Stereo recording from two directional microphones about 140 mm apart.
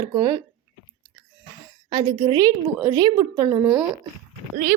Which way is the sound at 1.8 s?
25° right (ahead or behind).